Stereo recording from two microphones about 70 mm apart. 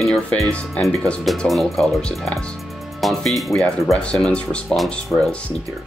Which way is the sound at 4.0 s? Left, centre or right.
Centre.